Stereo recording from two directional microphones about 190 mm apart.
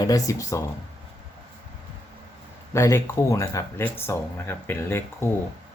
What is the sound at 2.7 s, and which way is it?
Speech, 15° left (ahead or behind).